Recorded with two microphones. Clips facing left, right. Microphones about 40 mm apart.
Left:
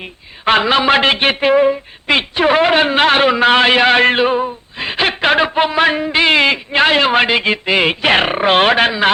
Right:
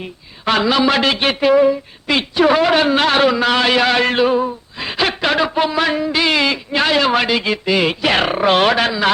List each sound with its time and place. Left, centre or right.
0.0 s a woman's voice: left
4.8 s a sound: left
5.5 s a woman's voice: left